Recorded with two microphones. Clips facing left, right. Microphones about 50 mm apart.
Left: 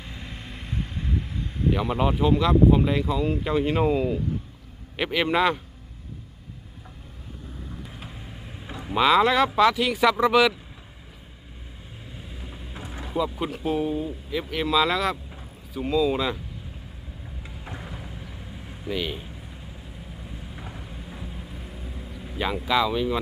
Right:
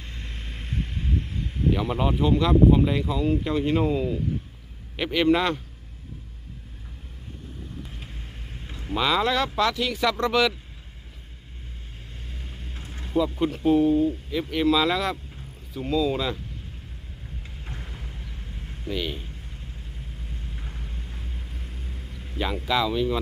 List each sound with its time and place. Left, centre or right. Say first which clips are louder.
0.0 s vehicle: left 2 dB; centre
4.9 s speech: right 1 dB; centre
7.9 s vehicle: left 2 dB; centre
8.7 s speech: left 4 dB; centre
12.3 s vehicle: left 1 dB; centre
12.8 s vehicle: left 7 dB; centre
13.1 s speech: right 3 dB; centre
17.7 s vehicle: left 4 dB; centre